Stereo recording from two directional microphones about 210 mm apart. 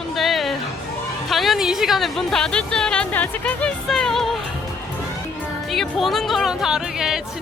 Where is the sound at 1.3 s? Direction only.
Centre (ahead or behind).